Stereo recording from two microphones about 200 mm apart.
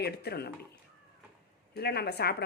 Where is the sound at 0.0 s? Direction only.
55° left (ahead or behind).